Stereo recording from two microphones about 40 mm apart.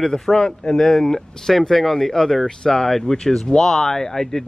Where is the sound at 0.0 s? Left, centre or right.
Centre.